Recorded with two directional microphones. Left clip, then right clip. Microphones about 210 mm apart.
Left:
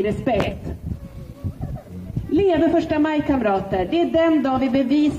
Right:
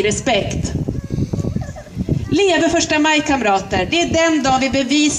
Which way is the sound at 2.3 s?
20° left (ahead or behind).